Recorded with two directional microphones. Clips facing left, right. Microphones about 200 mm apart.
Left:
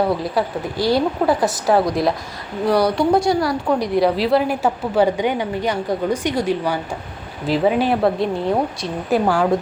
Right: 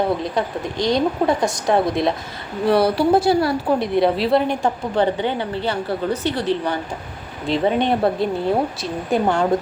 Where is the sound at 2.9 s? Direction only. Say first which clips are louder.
Right 1 dB; 5° right (ahead or behind).